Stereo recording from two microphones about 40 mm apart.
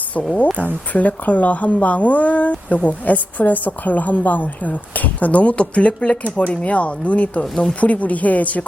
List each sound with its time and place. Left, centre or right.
0.5 s speech: left